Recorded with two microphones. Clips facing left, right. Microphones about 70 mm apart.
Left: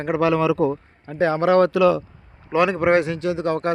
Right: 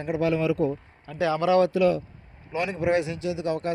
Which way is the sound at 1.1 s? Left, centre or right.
Left.